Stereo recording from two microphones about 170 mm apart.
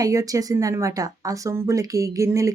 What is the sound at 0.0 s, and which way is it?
A woman's voice, 20° right (ahead or behind).